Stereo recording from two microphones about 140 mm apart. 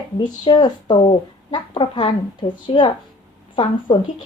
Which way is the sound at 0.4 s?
30° left (ahead or behind).